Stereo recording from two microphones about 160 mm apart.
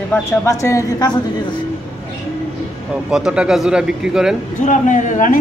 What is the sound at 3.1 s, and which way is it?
Speech, 5° right (ahead or behind).